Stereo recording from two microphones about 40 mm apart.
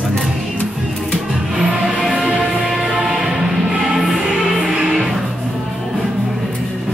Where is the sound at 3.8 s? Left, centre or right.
Centre.